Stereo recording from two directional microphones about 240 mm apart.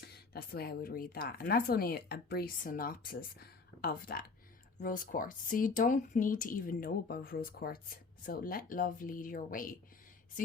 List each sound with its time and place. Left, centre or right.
0.3 s speech: left